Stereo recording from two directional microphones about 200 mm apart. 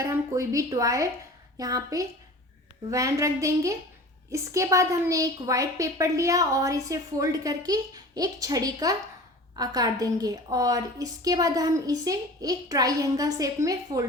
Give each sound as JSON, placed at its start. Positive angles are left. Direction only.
{"t": 0.0, "sound": "a woman's voice", "side_deg": -15}